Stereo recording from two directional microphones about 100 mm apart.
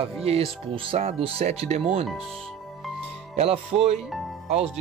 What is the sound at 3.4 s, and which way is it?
Speech, 90° right.